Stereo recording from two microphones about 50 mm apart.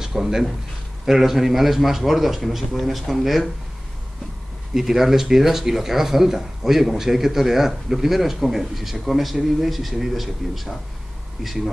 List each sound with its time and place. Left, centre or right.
0.0 s speech: centre
4.7 s speech: centre